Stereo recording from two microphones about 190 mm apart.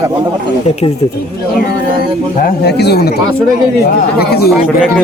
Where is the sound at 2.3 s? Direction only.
55° left (ahead or behind).